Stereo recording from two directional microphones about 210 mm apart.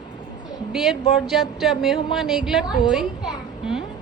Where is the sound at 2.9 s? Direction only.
Centre (ahead or behind).